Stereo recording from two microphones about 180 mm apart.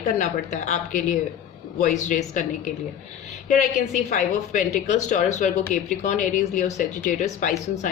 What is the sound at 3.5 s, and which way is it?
A woman's voice, 45° left (ahead or behind).